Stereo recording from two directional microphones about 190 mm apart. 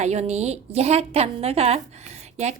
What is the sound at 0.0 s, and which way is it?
A woman's voice, 35° right (ahead or behind).